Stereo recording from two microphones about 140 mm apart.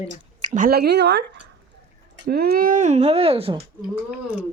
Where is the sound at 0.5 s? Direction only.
75° right (ahead or behind).